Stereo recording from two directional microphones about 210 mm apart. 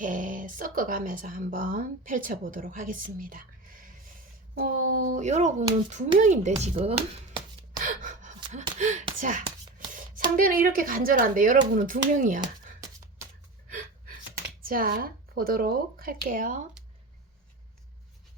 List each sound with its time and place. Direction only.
0.0 s speech: 40° right (ahead or behind)
7.8 s gasp: 40° right (ahead or behind)
8.8 s a sound: 35° right (ahead or behind)
10.3 s speech: 40° right (ahead or behind)
13.7 s gasp: 40° right (ahead or behind)
14.6 s speech: 45° right (ahead or behind)